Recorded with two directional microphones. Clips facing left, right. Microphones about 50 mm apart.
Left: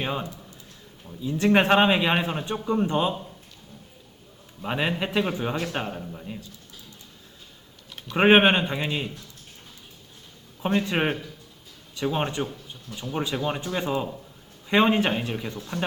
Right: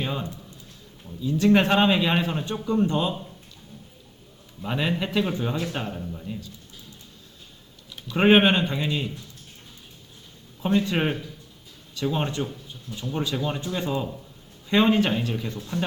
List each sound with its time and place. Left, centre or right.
0.0 s a man's voice: left
4.6 s a man's voice: left
8.1 s a man's voice: left
10.6 s a man's voice: left